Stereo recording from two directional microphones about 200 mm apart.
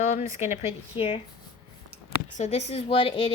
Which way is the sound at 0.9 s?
25° left (ahead or behind).